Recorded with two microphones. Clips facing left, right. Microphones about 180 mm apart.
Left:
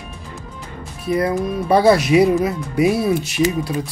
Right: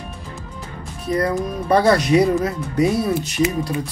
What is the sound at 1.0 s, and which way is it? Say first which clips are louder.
Speech: left 2 dB; 10° left (ahead or behind).